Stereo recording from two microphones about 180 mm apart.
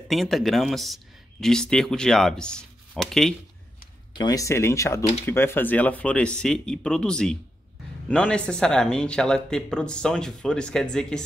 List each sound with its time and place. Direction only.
0.1 s speech: centre (ahead or behind)
4.1 s speech: 25° left (ahead or behind); by 11.2 s 5° left (ahead or behind)